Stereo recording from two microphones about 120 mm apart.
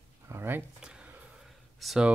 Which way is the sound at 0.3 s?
20° right (ahead or behind).